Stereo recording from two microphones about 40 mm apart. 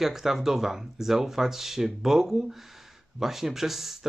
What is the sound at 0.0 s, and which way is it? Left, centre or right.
Speech, centre.